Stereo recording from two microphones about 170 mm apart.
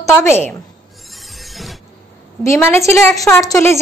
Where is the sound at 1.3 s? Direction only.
Centre (ahead or behind).